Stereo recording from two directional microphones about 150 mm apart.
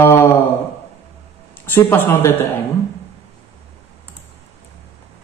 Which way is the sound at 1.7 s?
15° left (ahead or behind).